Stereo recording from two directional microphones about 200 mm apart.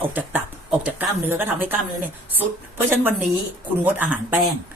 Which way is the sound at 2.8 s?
10° right (ahead or behind).